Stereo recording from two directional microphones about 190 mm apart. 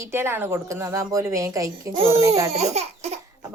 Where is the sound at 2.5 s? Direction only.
35° right (ahead or behind).